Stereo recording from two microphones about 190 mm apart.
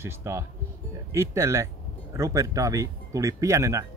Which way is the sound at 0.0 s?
15° right (ahead or behind).